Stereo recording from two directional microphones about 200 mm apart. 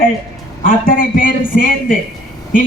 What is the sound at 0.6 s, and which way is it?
A man's voice, 45° left (ahead or behind).